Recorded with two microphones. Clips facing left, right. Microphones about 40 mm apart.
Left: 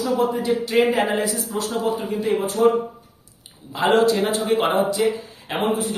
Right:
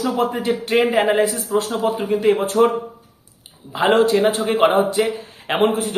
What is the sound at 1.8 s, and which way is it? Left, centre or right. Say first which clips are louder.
Speech: right 7 dB; right.